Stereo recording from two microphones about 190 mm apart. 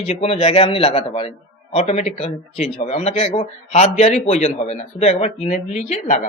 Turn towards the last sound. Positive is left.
turn(degrees=40)  # may be behind; listen again after turning